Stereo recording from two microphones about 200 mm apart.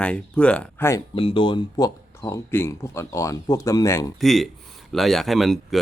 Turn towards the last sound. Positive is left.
turn(degrees=0)  # may be behind; listen again after turning